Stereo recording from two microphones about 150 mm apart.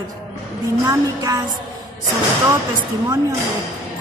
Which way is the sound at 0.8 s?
25° right (ahead or behind).